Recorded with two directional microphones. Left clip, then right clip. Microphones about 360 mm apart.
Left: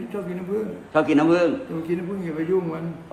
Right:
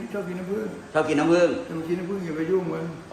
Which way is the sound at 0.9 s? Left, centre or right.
Left.